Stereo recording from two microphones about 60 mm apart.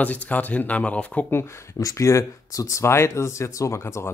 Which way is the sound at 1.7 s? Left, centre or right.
Left.